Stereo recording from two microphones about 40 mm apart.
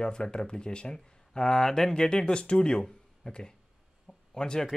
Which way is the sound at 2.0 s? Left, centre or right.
Left.